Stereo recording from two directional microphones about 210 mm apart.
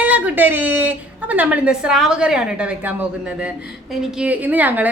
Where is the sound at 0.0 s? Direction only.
10° right (ahead or behind).